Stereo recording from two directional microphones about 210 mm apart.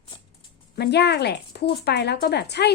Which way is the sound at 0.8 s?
55° left (ahead or behind).